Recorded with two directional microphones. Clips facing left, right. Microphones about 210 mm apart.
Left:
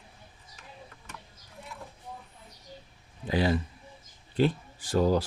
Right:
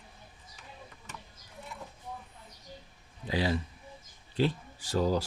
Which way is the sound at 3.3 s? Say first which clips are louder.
Left 4 dB; 50° left (ahead or behind).